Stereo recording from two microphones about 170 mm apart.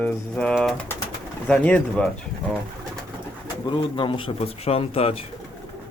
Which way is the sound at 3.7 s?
30° left (ahead or behind).